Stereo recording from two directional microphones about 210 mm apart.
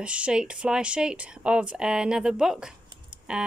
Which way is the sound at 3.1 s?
5° right (ahead or behind).